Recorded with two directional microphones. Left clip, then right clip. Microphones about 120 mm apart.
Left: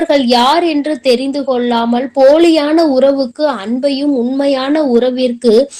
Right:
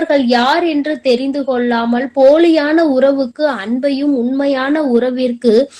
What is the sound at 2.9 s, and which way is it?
Speech, centre (ahead or behind).